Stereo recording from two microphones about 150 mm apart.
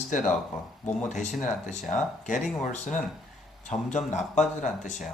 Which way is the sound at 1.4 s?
55° left (ahead or behind).